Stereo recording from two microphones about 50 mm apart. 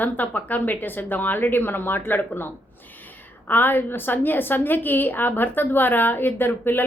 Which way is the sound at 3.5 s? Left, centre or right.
Left.